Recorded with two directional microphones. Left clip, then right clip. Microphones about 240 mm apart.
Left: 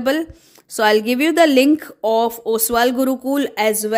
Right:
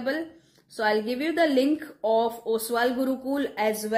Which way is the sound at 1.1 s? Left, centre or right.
Left.